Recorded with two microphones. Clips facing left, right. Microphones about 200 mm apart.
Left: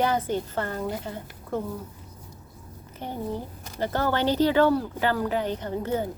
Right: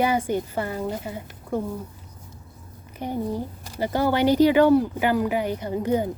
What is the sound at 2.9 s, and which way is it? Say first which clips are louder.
Speech: right 4 dB; 10° right (ahead or behind).